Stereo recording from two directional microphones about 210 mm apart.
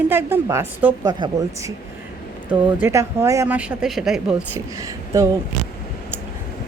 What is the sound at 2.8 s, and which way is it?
A woman's voice, 10° right (ahead or behind).